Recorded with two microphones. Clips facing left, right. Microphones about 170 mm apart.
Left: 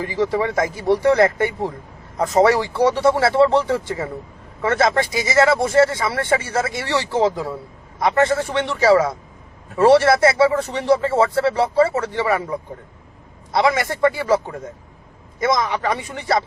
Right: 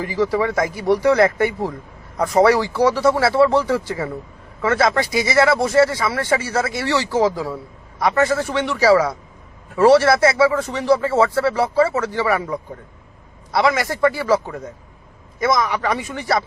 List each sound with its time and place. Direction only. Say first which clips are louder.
0.0 s speech: right 1 dB; 25° left (ahead or behind)